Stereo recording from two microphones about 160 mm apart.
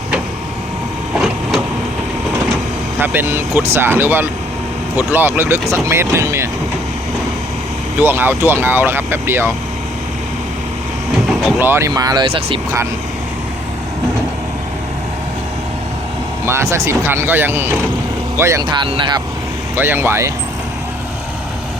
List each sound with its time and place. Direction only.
1.2 s vehicle: centre (ahead or behind)
3.0 s speech: 10° right (ahead or behind)
7.9 s speech: 15° right (ahead or behind)
11.3 s vehicle: centre (ahead or behind)
11.6 s speech: 15° right (ahead or behind); by 12.5 s 35° right (ahead or behind)
16.5 s speech: 15° right (ahead or behind)
19.7 s speech: 15° right (ahead or behind)